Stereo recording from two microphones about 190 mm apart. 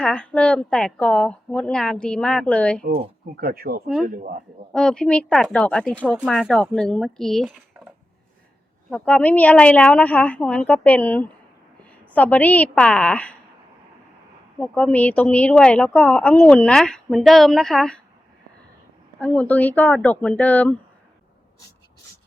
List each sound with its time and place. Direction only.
0.0 s a woman's voice: 5° left (ahead or behind)
3.4 s speech: 55° right (ahead or behind)
4.7 s a woman's voice: 5° left (ahead or behind)
8.9 s a woman's voice: 5° left (ahead or behind)
14.6 s a woman's voice: 5° left (ahead or behind)
19.2 s a woman's voice: 10° left (ahead or behind)